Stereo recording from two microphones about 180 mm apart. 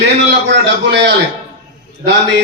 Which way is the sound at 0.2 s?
80° right.